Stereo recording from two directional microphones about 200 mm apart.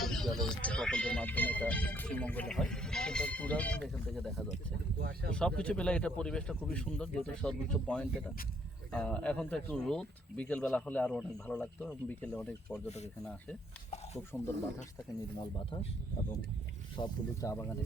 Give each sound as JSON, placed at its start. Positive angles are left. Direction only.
{"t": 0.0, "sound": "speech", "side_deg": 0}
{"t": 4.9, "sound": "speech", "side_deg": -50}
{"t": 5.3, "sound": "speech", "side_deg": 5}
{"t": 14.3, "sound": "speech", "side_deg": 5}
{"t": 15.5, "sound": "speech", "side_deg": 25}
{"t": 17.0, "sound": "speech", "side_deg": 15}